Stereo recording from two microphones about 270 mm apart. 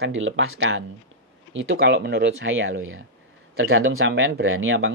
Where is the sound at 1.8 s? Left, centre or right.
Right.